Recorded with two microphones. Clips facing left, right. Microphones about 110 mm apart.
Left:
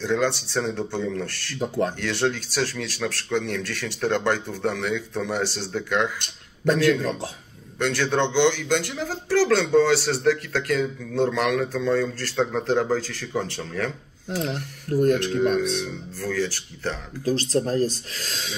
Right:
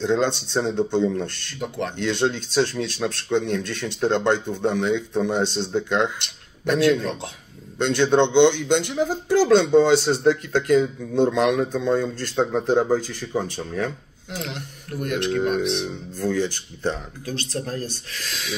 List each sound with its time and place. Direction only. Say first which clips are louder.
0.0 s speech: right 2 dB; 20° right (ahead or behind)
1.6 s speech: left 3 dB; 35° left (ahead or behind)
2.0 s speech: right 2 dB; 20° right (ahead or behind)
7.8 s speech: right 4 dB; 20° right (ahead or behind)
14.3 s speech: left 4 dB; 35° left (ahead or behind)
15.3 s speech: even; 20° right (ahead or behind)
17.2 s speech: left 7 dB; 35° left (ahead or behind)